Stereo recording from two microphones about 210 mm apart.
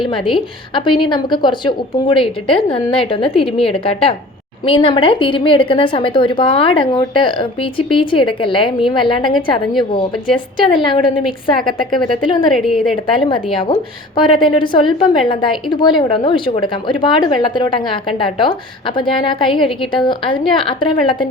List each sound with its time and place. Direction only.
0.0 s a woman's voice: 25° left (ahead or behind)
12.5 s a woman's voice: centre (ahead or behind)
13.1 s a woman's voice: 25° left (ahead or behind)